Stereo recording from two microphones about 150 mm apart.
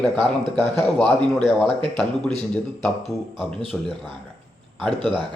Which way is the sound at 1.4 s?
30° right (ahead or behind).